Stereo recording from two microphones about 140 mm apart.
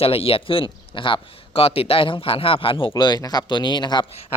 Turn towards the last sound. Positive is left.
turn(degrees=30)  # may be behind; listen again after turning